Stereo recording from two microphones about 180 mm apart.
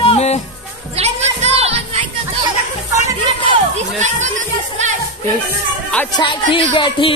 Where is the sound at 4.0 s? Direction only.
40° right (ahead or behind).